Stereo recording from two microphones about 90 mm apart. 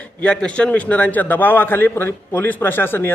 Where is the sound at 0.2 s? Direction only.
10° left (ahead or behind).